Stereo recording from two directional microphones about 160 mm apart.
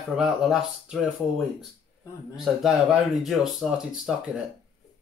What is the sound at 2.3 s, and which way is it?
Speech, centre (ahead or behind).